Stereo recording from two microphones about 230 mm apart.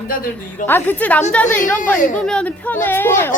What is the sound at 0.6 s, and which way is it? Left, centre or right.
Speech, centre.